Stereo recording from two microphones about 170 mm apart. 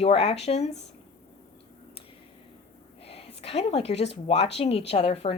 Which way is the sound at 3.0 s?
35° left (ahead or behind).